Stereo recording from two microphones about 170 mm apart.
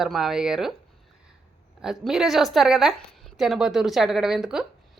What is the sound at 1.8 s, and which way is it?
A woman's voice, 5° right (ahead or behind).